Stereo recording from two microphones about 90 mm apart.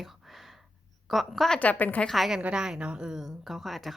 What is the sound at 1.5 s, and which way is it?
Speech, 15° left (ahead or behind).